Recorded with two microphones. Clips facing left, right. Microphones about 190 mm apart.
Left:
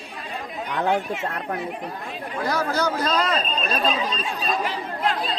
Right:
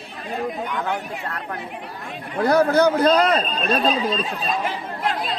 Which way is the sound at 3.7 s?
35° right (ahead or behind).